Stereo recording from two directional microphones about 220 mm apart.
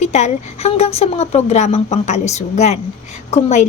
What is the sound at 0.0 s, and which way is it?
A woman's voice, 30° left (ahead or behind).